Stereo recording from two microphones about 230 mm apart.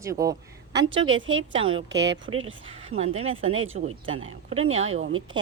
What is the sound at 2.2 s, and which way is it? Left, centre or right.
Speech, right.